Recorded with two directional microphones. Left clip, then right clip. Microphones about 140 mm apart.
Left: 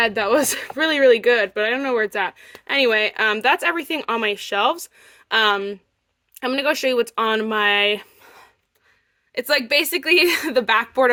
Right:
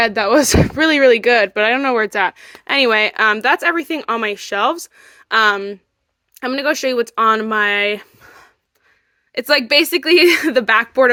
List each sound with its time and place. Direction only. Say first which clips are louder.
0.0 s speech: right 4 dB; 35° right (ahead or behind)
9.3 s speech: right 5 dB; 40° right (ahead or behind)